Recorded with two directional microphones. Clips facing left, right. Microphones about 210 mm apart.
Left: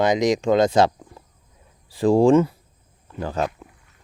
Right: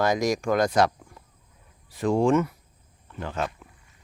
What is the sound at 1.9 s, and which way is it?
Speech, 30° left (ahead or behind).